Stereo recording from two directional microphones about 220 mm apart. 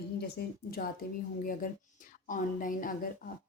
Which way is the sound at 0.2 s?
45° left (ahead or behind).